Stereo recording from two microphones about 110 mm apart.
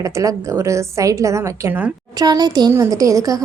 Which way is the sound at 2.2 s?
35° right (ahead or behind).